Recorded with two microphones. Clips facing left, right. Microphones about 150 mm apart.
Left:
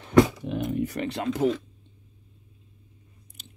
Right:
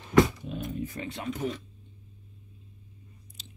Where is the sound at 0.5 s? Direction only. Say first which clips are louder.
Left 7 dB; 75° left (ahead or behind); by 1.5 s 90° left.